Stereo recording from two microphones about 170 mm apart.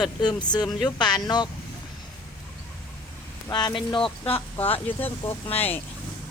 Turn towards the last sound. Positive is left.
turn(degrees=35)  # may be behind; listen again after turning